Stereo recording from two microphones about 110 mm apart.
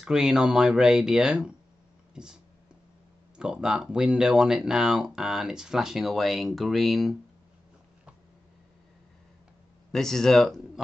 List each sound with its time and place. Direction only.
0.0 s speech: 5° right (ahead or behind)
2.1 s a sound: 5° right (ahead or behind)
3.3 s speech: 5° right (ahead or behind)
9.9 s speech: 5° left (ahead or behind)